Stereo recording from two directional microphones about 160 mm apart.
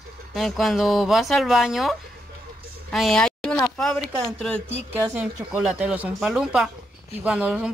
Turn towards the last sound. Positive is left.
turn(degrees=-5)  # may be behind; listen again after turning